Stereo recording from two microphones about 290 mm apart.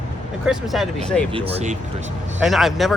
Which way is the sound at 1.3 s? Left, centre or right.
Right.